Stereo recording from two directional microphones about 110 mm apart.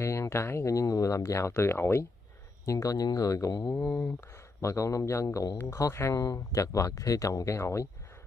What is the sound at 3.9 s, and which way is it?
Speech, 20° left (ahead or behind).